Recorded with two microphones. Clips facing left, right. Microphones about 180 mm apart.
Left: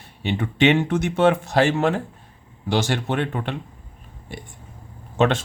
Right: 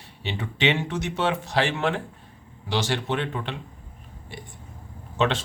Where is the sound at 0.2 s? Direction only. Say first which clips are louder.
Left 7 dB; 50° left (ahead or behind).